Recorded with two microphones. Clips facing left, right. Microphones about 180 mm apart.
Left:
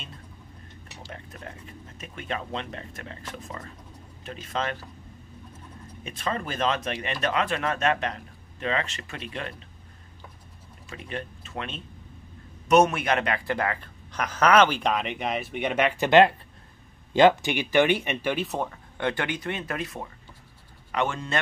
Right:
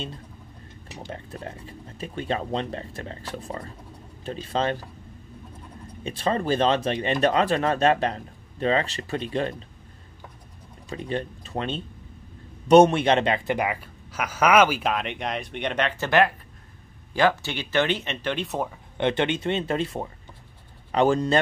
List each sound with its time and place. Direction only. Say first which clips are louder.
1.1 s speech: right 5 dB; 30° right (ahead or behind)
6.0 s speech: right 7 dB; 30° right (ahead or behind)
10.9 s speech: right 6 dB; 35° right (ahead or behind); by 16.1 s 10° left (ahead or behind)
16.1 s speech: left 4 dB; 20° left (ahead or behind); by 18.8 s centre (ahead or behind)
18.9 s speech: right 5 dB; 20° right (ahead or behind)